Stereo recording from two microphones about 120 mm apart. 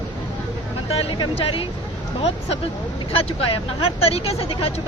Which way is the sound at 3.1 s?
55° left (ahead or behind).